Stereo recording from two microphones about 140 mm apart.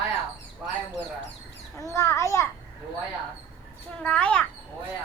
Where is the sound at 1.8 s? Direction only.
20° left (ahead or behind).